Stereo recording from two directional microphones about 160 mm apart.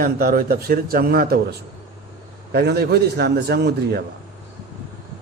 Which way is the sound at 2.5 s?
90° right.